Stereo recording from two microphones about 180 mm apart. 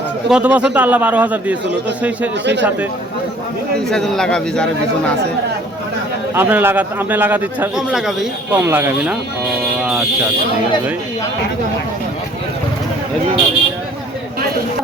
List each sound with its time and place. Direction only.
0.3 s a man's voice: 5° right (ahead or behind)
2.4 s speech: 75° right (ahead or behind)
3.8 s a man's voice: centre (ahead or behind)
6.3 s a man's voice: 10° right (ahead or behind)
8.5 s a man's voice: 10° right (ahead or behind)